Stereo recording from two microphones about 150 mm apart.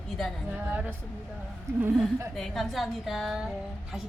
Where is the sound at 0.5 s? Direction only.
10° right (ahead or behind).